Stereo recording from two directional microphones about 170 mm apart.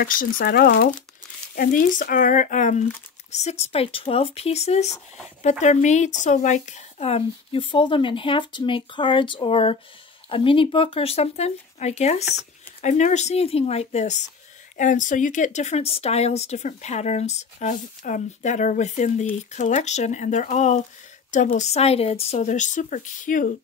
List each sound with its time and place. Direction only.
0.0 s speech: 55° left (ahead or behind)